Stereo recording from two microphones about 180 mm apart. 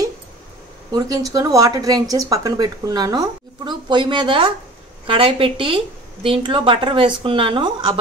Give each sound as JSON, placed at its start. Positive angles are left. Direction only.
{"t": 0.9, "sound": "speech", "side_deg": -20}